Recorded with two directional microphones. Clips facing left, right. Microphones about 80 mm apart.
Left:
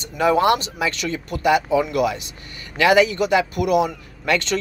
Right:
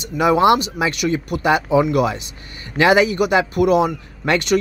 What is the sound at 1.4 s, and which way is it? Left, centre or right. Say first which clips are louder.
Speech: right 1 dB; right.